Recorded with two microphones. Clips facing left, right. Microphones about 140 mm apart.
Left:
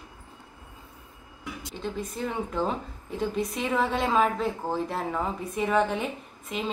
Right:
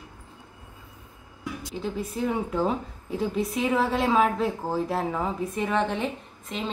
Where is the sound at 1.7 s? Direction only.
5° right (ahead or behind).